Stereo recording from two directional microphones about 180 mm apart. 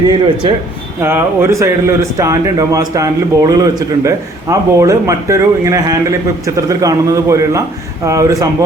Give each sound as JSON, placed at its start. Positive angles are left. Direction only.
{"t": 1.0, "sound": "speech", "side_deg": -15}